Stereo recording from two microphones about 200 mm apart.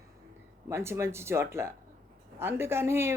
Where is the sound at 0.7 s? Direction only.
15° right (ahead or behind).